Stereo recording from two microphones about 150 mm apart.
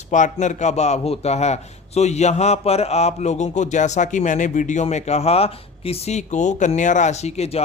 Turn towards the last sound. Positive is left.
turn(degrees=45)  # may be behind; listen again after turning